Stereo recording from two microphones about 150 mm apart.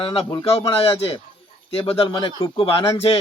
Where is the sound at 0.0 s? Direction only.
40° left (ahead or behind).